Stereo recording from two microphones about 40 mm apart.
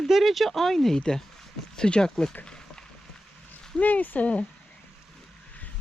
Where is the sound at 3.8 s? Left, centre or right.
Left.